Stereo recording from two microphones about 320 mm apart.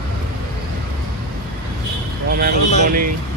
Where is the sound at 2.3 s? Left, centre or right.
Right.